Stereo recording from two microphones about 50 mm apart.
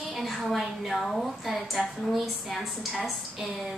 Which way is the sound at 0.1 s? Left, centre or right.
Centre.